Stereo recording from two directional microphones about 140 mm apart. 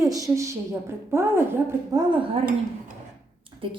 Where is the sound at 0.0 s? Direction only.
25° right (ahead or behind).